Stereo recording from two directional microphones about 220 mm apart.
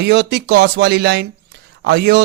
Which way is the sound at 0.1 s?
55° right (ahead or behind).